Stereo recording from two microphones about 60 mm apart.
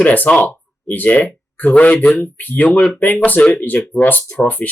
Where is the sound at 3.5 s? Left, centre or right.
Left.